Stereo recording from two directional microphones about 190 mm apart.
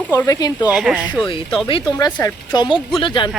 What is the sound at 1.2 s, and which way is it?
A woman's voice, 30° left (ahead or behind).